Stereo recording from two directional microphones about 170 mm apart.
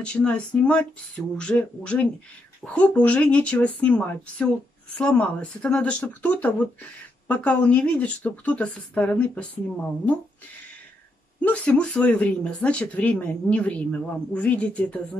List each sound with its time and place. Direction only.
0.0 s speech: 5° left (ahead or behind)
11.4 s speech: 10° left (ahead or behind)